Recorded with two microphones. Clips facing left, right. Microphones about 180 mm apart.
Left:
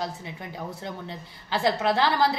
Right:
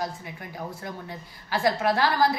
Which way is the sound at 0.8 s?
20° left (ahead or behind).